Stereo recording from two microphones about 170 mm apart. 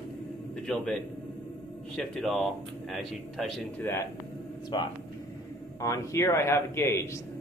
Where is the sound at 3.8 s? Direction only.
15° left (ahead or behind).